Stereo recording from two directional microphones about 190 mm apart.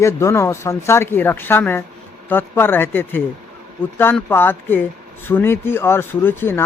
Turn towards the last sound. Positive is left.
turn(degrees=10)  # may be behind; listen again after turning